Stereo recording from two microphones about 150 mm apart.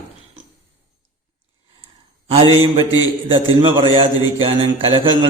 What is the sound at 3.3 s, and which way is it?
A man's voice, 35° right (ahead or behind).